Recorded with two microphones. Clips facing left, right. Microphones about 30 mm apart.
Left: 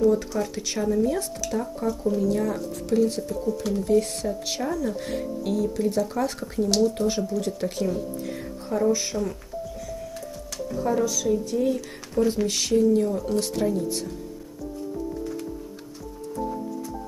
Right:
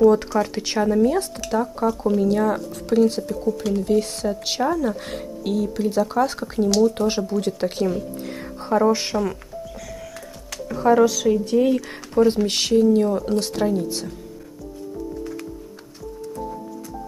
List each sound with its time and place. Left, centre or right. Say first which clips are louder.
0.1 s speech: right 5 dB; right
3.6 s speech: right 1 dB; right
4.0 s speech: right 3 dB; right
5.9 s speech: right 4 dB; right
6.5 s speech: right 3 dB; right
7.1 s speech: right 3 dB; right
8.4 s music: right 7 dB; right
10.7 s speech: right 8 dB; right
12.7 s speech: right 4 dB; right